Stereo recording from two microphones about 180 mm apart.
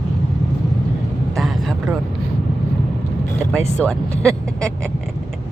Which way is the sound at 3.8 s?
5° left (ahead or behind).